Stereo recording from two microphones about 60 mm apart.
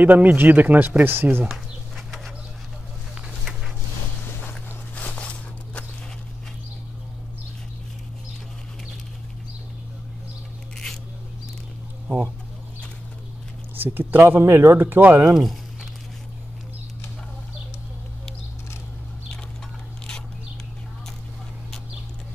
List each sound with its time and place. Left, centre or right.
0.0 s speech: right
2.0 s bird: centre
4.9 s walk: left
13.7 s speech: right
15.3 s a sound: centre